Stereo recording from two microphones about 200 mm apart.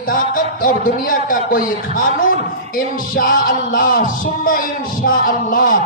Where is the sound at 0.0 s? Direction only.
45° left (ahead or behind).